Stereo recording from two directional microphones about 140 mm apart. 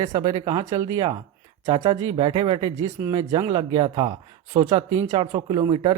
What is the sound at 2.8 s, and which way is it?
Speech, 20° right (ahead or behind).